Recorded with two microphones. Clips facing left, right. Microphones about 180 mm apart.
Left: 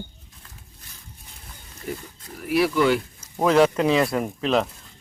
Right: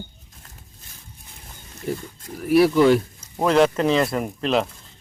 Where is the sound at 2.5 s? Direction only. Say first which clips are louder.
Right 5 dB; 30° right (ahead or behind).